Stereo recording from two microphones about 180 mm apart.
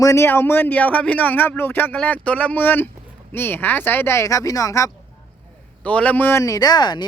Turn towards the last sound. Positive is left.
turn(degrees=25)  # may be behind; listen again after turning